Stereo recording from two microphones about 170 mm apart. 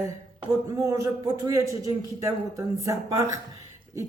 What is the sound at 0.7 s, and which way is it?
A woman's voice, 15° right (ahead or behind).